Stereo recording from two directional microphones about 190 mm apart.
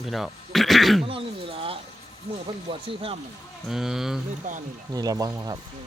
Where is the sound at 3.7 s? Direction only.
Centre (ahead or behind).